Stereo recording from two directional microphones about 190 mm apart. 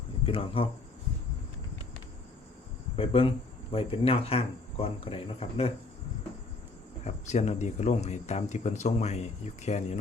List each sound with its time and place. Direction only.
0.3 s speech: 30° left (ahead or behind)
2.9 s speech: 30° left (ahead or behind)
7.0 s speech: 35° left (ahead or behind)